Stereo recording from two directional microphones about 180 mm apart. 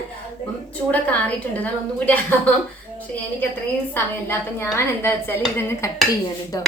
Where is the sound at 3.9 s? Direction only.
15° left (ahead or behind).